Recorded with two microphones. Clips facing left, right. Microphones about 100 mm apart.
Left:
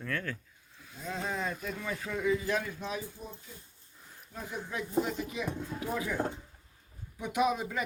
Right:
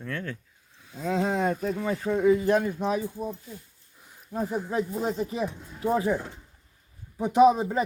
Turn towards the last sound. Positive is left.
turn(degrees=-35)  # may be behind; listen again after turning